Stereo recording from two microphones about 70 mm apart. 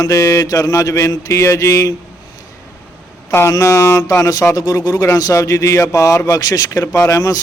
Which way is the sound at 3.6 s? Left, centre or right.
Left.